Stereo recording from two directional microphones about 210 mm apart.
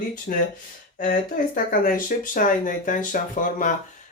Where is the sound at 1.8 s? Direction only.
40° left (ahead or behind).